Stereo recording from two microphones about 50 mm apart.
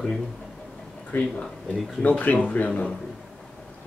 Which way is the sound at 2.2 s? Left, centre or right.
Left.